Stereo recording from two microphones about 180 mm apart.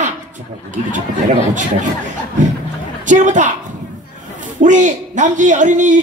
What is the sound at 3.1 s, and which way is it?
Speech, 45° right (ahead or behind).